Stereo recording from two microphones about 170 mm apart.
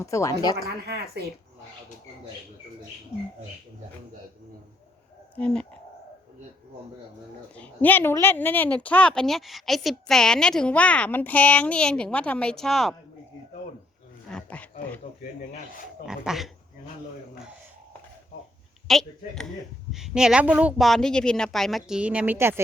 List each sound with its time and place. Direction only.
0.0 s a woman's voice: 20° left (ahead or behind)
0.5 s speech: 70° right (ahead or behind)
5.4 s a woman's voice: 5° left (ahead or behind)
7.5 s a woman's voice: 10° left (ahead or behind)
14.3 s a sound: 5° left (ahead or behind)
16.0 s a woman's voice: 5° right (ahead or behind)
18.9 s a woman's voice: centre (ahead or behind); by 22.6 s 15° right (ahead or behind)